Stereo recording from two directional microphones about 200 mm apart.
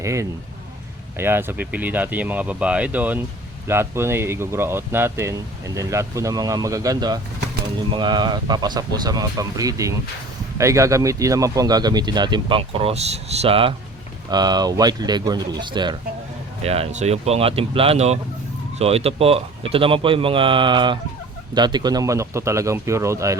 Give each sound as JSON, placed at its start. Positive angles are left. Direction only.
{"t": 0.0, "sound": "speech", "side_deg": -15}